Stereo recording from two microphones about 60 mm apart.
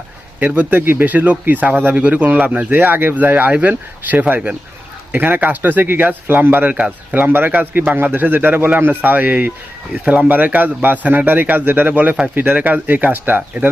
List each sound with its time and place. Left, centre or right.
0.3 s a man's voice: right